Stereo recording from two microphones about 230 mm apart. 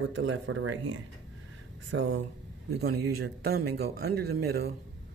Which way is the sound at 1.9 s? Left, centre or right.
Right.